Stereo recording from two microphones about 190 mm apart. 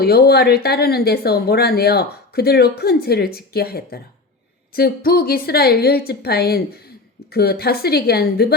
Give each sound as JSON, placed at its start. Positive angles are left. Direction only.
{"t": 0.0, "sound": "speech", "side_deg": 55}